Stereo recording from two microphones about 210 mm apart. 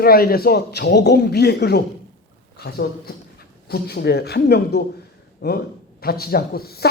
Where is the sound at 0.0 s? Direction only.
45° left (ahead or behind).